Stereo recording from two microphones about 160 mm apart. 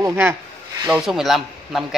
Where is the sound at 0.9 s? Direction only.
5° right (ahead or behind).